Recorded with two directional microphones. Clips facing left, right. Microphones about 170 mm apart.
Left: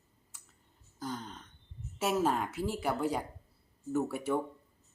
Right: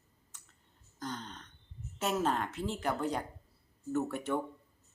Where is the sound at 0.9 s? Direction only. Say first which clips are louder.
Left 2 dB; 5° left (ahead or behind).